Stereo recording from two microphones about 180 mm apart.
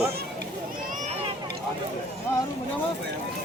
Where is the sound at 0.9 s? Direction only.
40° right (ahead or behind).